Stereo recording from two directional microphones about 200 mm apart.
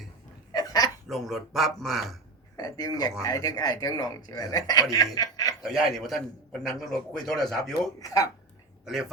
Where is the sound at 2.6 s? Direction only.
20° left (ahead or behind).